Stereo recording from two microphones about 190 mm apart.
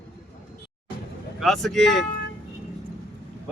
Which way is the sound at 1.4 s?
Centre (ahead or behind).